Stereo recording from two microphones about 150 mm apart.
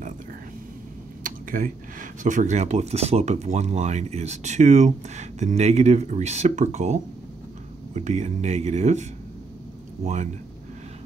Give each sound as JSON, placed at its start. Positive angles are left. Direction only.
{"t": 1.2, "sound": "speech", "side_deg": -60}
{"t": 10.0, "sound": "speech", "side_deg": -55}